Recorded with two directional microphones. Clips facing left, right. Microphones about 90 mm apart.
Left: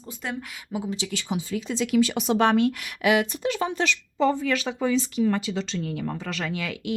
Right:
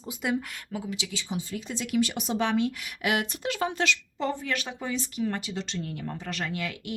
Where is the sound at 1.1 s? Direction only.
75° left (ahead or behind).